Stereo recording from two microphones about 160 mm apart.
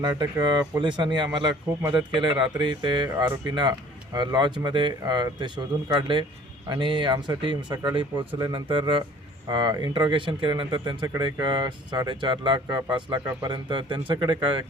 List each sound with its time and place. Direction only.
0.0 s speech: 25° right (ahead or behind)
2.6 s speech: 25° right (ahead or behind)